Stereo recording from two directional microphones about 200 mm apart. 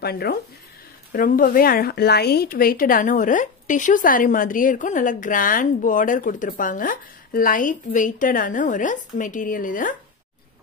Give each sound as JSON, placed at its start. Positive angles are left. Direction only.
{"t": 0.0, "sound": "a woman's voice", "side_deg": 50}